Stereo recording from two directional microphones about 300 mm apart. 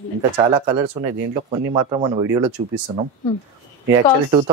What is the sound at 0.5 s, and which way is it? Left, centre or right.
Speech, centre.